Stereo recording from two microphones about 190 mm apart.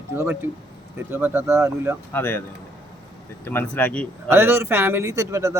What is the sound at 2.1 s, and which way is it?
Speech, 10° left (ahead or behind).